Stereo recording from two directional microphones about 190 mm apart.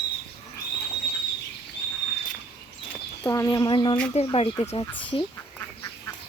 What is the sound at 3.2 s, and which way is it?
Speech, 15° left (ahead or behind).